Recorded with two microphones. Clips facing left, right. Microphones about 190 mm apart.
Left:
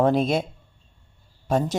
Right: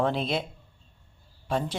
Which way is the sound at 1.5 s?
45° left (ahead or behind).